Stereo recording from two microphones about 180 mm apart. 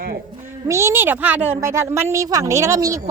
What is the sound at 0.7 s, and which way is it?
Speech, 15° right (ahead or behind).